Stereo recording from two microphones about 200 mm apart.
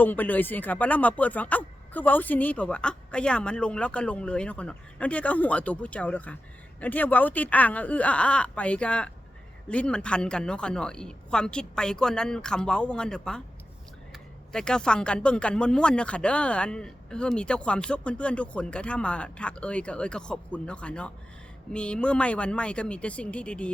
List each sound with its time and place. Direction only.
0.0 s speech: 10° left (ahead or behind)
14.5 s speech: 5° left (ahead or behind)